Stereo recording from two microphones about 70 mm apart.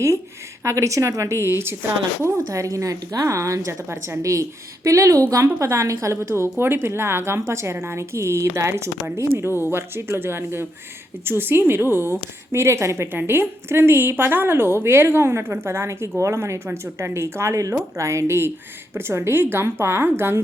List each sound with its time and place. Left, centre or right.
0.6 s a woman's voice: right
2.2 s a woman's voice: right
4.2 s a woman's voice: right
13.1 s a woman's voice: right